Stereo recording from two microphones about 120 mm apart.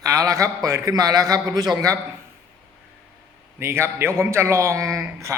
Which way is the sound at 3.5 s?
20° right (ahead or behind).